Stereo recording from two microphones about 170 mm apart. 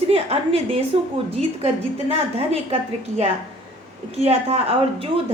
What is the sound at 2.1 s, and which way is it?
Speech, 35° right (ahead or behind).